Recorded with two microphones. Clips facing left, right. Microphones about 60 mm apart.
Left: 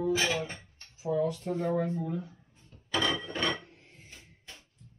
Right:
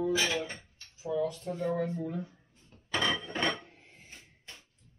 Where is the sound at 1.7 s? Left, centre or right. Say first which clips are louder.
Left 1 dB; centre.